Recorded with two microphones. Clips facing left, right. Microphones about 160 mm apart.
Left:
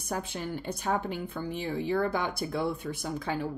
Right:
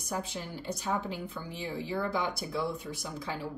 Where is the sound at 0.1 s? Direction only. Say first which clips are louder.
Left 3 dB; 55° left (ahead or behind).